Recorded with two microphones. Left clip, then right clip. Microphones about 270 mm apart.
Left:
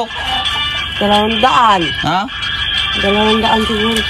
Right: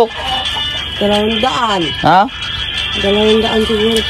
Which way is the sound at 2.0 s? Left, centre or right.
Right.